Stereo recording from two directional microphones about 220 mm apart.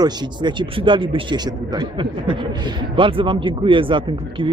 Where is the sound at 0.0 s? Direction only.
20° right (ahead or behind).